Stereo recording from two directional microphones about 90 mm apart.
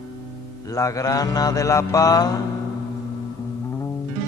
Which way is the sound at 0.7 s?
40° left (ahead or behind).